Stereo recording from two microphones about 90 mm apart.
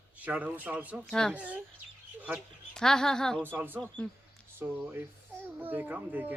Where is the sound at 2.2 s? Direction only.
15° right (ahead or behind).